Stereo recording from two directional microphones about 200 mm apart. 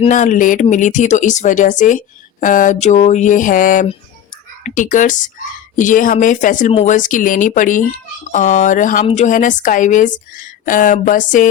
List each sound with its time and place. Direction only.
0.0 s speech: 40° left (ahead or behind)